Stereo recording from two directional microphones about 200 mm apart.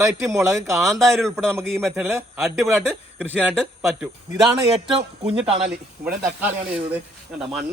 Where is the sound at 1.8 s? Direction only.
10° right (ahead or behind).